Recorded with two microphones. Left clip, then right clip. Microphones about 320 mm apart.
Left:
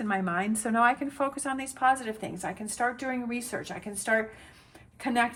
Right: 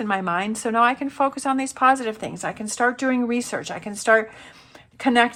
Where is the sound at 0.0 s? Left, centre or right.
Centre.